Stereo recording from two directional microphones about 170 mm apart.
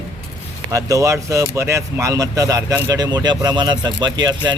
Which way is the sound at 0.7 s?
20° right (ahead or behind).